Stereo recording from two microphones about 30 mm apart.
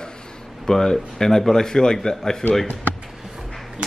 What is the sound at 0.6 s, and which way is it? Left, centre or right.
A man's voice, centre.